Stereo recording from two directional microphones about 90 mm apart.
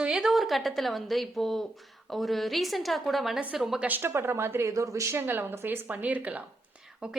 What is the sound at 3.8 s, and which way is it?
A woman's voice, 25° right (ahead or behind).